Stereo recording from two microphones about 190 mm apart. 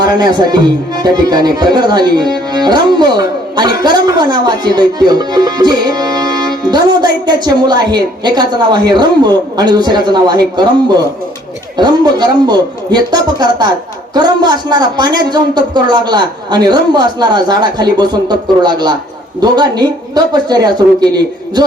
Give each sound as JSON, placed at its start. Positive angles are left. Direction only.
{"t": 0.0, "sound": "speech", "side_deg": -20}
{"t": 11.8, "sound": "speech", "side_deg": -20}